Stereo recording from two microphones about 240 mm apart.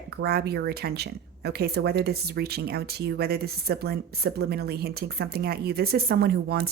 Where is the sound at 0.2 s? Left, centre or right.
Right.